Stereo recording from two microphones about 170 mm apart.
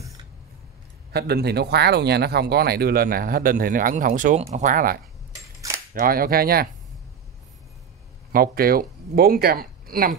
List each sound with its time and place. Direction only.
1.1 s speech: 70° right (ahead or behind)
8.3 s speech: 60° right (ahead or behind)